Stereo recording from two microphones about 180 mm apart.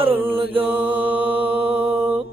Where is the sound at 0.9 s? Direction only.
10° right (ahead or behind).